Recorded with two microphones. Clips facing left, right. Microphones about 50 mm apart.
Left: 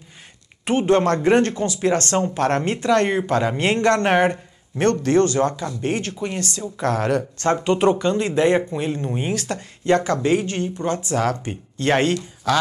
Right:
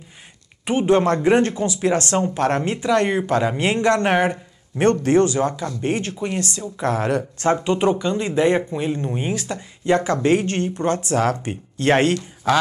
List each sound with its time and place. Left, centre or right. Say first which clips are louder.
0.7 s speech: even; centre
2.6 s speech: left 1 dB; centre
5.8 s speech: right 2 dB; right
7.6 s speech: left 1 dB; centre
9.3 s speech: left 1 dB; centre
10.1 s speech: right 2 dB; right